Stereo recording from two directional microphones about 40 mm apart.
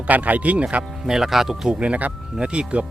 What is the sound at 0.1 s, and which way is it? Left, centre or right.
Speech, right.